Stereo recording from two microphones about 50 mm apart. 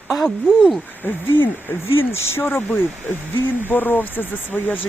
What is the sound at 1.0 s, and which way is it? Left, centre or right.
Speech, left.